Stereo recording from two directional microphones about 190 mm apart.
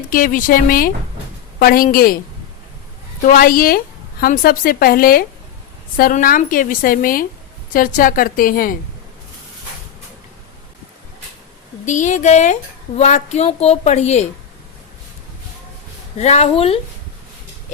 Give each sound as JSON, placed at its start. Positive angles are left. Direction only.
{"t": 0.1, "sound": "a woman's voice", "side_deg": 45}
{"t": 3.2, "sound": "a woman's voice", "side_deg": 50}
{"t": 11.9, "sound": "a woman's voice", "side_deg": 40}
{"t": 16.1, "sound": "a woman's voice", "side_deg": 35}